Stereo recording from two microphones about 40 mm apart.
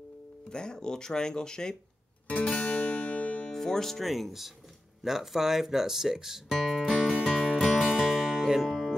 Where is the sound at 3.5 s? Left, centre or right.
Centre.